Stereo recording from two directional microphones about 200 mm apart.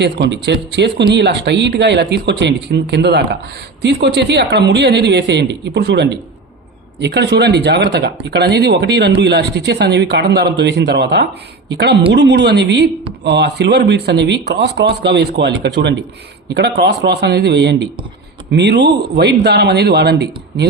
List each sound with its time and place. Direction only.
0.0 s speech: 60° right (ahead or behind)